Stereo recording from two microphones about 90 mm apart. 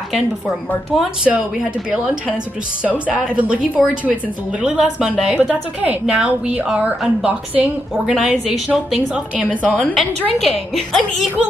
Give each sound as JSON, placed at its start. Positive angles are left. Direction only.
{"t": 0.9, "sound": "a woman's voice", "side_deg": -10}
{"t": 2.8, "sound": "a woman's voice", "side_deg": -15}
{"t": 9.9, "sound": "a woman's voice", "side_deg": 0}